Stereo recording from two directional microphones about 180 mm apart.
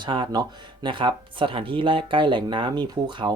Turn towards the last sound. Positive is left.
turn(degrees=-25)  # may be behind; listen again after turning